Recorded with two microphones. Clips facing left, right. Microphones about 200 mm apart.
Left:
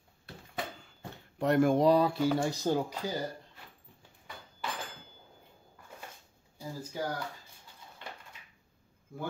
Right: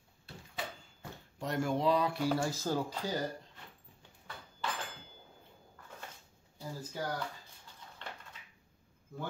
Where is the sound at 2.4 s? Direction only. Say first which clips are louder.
Left 4 dB; 20° left (ahead or behind).